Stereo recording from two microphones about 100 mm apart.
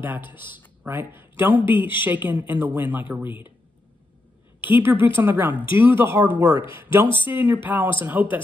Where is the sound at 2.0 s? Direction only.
15° right (ahead or behind).